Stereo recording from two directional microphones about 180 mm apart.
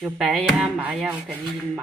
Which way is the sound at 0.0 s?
5° right (ahead or behind).